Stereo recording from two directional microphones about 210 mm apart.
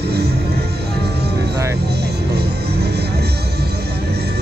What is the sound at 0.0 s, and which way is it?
Music, 50° right (ahead or behind).